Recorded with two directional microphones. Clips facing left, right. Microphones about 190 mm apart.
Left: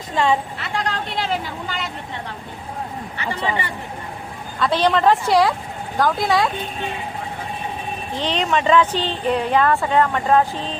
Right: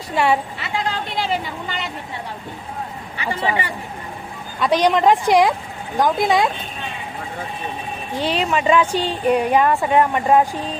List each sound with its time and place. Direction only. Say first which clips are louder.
0.2 s a woman's voice: right 1 dB; 5° right (ahead or behind)
3.2 s speech: right 2 dB; 10° right (ahead or behind)
8.1 s speech: right 1 dB; 10° right (ahead or behind)